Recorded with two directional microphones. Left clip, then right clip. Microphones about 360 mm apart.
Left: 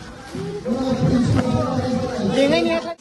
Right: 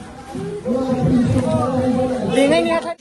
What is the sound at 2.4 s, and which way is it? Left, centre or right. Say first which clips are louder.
Speech: right 3 dB; right.